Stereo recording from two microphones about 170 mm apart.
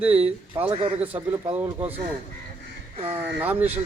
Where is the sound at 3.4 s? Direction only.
10° right (ahead or behind).